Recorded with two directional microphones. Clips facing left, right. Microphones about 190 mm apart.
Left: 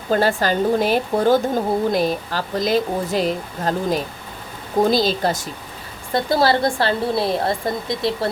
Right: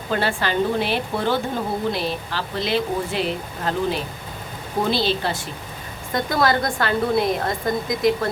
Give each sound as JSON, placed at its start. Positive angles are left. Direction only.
{"t": 0.1, "sound": "speech", "side_deg": 40}
{"t": 6.1, "sound": "a woman's voice", "side_deg": 30}